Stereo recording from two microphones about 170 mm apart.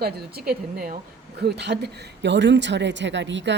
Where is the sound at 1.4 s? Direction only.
85° right.